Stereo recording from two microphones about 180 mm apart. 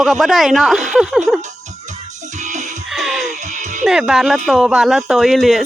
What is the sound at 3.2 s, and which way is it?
Music, 40° right (ahead or behind).